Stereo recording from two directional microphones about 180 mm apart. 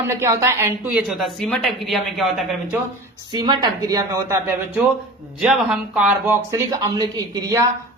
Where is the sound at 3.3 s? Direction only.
25° right (ahead or behind).